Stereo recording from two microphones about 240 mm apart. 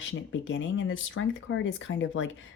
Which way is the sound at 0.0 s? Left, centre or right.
Left.